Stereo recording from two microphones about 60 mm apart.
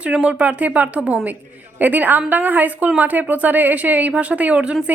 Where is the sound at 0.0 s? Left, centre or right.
Centre.